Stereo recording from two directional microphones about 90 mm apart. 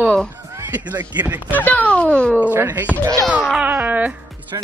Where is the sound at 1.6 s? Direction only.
15° left (ahead or behind).